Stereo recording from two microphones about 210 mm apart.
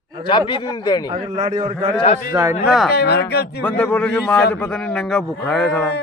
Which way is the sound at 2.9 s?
50° left (ahead or behind).